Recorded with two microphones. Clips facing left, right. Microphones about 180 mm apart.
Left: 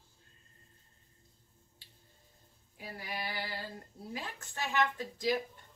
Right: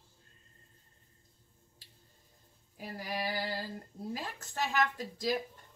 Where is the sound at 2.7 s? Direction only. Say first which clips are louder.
Right 4 dB; 40° right (ahead or behind).